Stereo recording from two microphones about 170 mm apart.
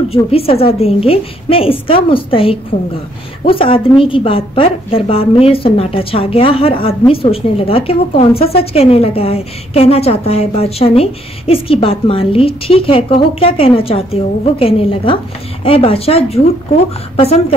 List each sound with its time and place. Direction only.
0.1 s a woman's voice: 35° left (ahead or behind)